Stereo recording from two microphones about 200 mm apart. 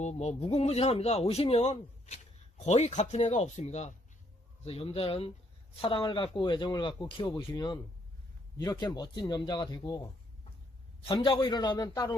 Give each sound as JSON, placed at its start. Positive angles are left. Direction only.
{"t": 0.0, "sound": "speech", "side_deg": 35}
{"t": 11.1, "sound": "speech", "side_deg": 25}